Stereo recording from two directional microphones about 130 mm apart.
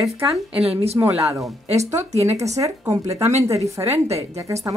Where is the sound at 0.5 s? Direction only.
50° right (ahead or behind).